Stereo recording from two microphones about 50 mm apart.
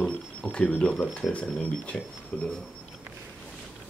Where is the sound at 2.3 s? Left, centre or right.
Left.